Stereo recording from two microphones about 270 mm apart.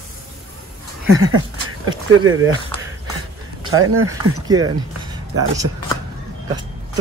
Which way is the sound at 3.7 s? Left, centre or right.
Right.